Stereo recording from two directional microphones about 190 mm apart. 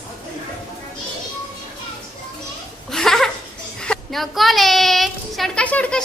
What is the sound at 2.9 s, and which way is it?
Laughter, centre (ahead or behind).